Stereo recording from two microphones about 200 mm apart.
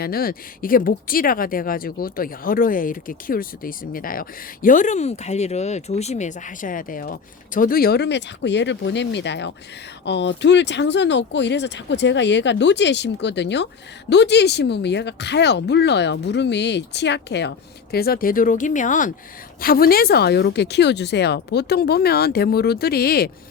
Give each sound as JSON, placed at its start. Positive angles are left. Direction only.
{"t": 0.0, "sound": "speech", "side_deg": 50}